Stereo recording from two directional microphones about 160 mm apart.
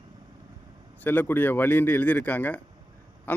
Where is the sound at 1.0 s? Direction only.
10° left (ahead or behind).